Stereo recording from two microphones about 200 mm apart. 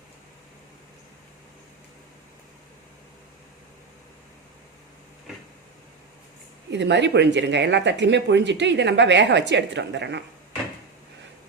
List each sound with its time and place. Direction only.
6.7 s speech: 60° right (ahead or behind)